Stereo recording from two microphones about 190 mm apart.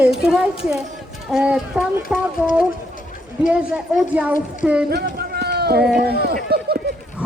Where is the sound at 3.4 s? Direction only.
5° right (ahead or behind).